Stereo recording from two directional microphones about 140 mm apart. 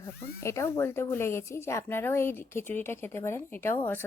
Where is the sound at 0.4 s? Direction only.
20° left (ahead or behind).